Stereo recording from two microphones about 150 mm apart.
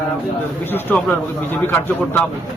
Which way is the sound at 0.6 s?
15° left (ahead or behind).